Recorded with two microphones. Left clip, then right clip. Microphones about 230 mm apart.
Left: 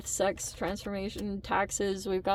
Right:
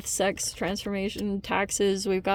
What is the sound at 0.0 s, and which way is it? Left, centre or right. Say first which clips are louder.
Speech: right 3 dB; right.